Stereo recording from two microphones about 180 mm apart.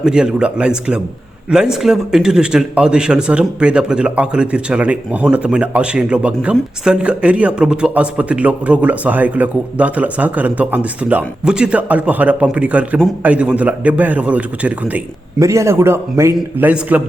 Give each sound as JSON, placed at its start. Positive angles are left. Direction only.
{"t": 0.0, "sound": "a man's voice", "side_deg": -5}